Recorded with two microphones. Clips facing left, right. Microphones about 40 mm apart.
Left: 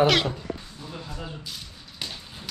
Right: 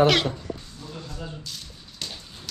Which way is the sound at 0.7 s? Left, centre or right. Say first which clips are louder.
Even; centre.